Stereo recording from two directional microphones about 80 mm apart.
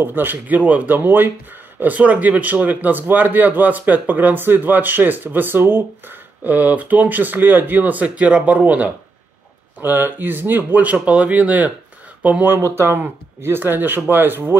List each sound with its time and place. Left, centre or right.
0.0 s speech: right